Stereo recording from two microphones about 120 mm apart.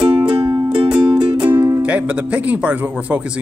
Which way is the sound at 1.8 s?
10° right (ahead or behind).